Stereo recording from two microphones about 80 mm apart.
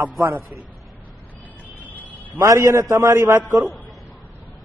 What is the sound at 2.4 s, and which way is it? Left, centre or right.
Speech, right.